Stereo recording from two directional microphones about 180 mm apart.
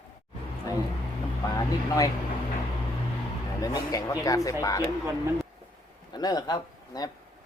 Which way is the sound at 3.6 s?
20° left (ahead or behind).